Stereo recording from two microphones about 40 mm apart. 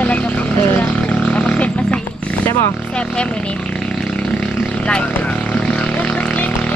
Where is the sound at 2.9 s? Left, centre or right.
Left.